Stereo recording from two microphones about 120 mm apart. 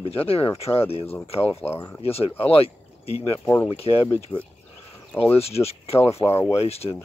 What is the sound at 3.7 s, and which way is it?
Speech, 55° left (ahead or behind).